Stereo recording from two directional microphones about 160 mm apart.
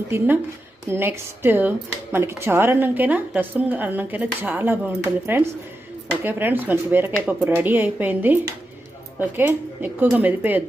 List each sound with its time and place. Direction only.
0.1 s a woman's voice: 15° right (ahead or behind)